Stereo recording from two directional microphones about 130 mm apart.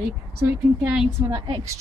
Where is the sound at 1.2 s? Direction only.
35° right (ahead or behind).